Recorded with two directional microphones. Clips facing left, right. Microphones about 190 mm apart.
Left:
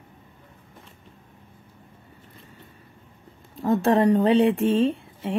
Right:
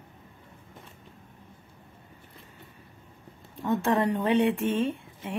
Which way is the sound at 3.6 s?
35° left (ahead or behind).